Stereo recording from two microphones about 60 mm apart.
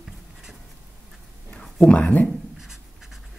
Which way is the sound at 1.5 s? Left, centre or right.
Centre.